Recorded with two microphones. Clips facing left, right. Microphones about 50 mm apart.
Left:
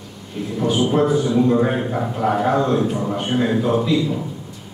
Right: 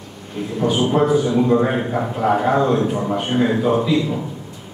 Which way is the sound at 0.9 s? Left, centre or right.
Centre.